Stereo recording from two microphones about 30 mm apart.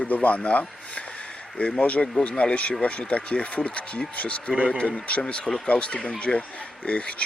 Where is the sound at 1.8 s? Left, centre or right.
Left.